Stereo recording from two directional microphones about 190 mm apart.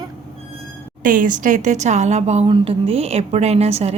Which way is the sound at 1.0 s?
45° right (ahead or behind).